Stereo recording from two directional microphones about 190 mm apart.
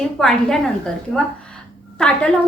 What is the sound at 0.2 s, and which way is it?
Speech, 5° left (ahead or behind).